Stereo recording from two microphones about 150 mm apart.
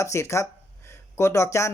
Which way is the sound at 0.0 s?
20° left (ahead or behind).